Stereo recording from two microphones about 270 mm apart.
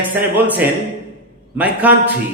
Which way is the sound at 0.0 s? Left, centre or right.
Centre.